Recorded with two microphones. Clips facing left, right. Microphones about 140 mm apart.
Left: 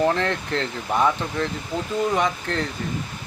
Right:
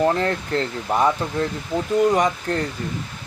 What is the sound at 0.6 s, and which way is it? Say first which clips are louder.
Speech: right 1 dB; 10° right (ahead or behind).